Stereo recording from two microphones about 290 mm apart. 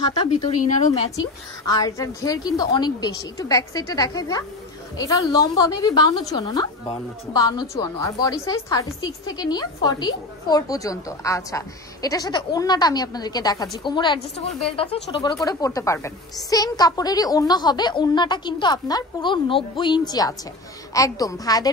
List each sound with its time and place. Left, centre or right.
0.4 s speech: left
1.7 s speech: centre